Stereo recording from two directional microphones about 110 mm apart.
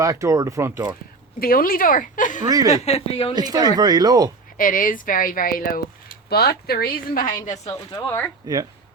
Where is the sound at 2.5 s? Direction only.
35° right (ahead or behind).